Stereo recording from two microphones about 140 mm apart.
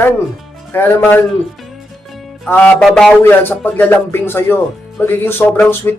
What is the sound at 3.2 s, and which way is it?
Speech, 15° left (ahead or behind).